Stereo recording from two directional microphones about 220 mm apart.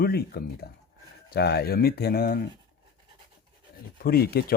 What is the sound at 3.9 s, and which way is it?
Speech, 40° left (ahead or behind).